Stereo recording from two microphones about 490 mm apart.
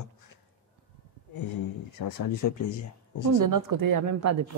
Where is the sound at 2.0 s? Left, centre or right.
Left.